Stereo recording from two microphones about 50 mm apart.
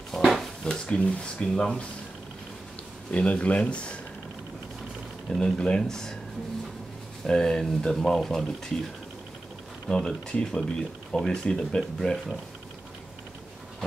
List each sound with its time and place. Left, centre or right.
0.2 s dishes: centre
0.7 s speech: centre
3.1 s speech: left
5.4 s speech: centre
7.2 s speech: centre
9.8 s speech: centre